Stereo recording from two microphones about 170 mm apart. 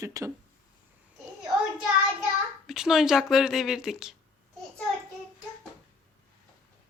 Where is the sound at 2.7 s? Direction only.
Centre (ahead or behind).